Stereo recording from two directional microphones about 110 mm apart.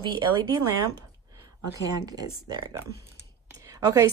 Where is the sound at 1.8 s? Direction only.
35° right (ahead or behind).